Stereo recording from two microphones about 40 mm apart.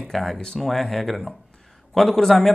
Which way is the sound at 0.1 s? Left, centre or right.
Centre.